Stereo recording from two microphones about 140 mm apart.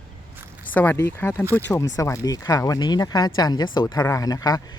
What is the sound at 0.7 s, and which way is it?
A man's voice, 15° left (ahead or behind).